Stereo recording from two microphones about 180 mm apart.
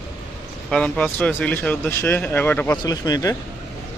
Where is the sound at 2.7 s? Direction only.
20° left (ahead or behind).